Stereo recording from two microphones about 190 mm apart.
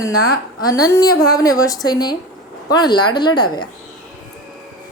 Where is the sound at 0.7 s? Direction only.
15° left (ahead or behind).